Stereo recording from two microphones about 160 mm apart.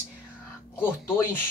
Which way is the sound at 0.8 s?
15° left (ahead or behind).